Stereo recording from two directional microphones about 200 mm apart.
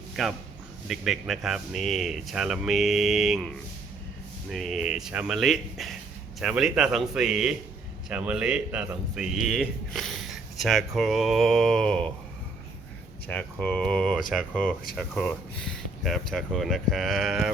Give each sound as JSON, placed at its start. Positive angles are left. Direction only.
{"t": 0.2, "sound": "speech", "side_deg": 0}
{"t": 13.2, "sound": "speech", "side_deg": 10}